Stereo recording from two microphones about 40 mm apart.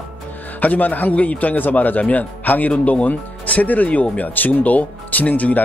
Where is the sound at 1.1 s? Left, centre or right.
Left.